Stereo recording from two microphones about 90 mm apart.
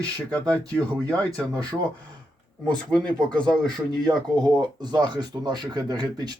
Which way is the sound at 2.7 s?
10° left (ahead or behind).